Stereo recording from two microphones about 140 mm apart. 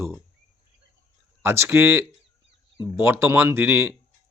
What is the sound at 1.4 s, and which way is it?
Speech, 15° right (ahead or behind).